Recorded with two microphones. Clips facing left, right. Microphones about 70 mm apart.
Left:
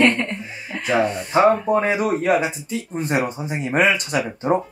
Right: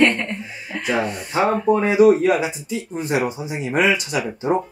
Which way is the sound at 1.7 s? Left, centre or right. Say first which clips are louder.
Right 1 dB; left.